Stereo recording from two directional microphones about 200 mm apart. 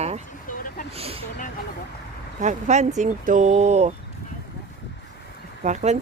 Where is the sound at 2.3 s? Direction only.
35° right (ahead or behind).